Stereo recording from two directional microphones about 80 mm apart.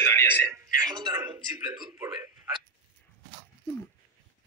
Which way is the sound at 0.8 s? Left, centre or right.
Right.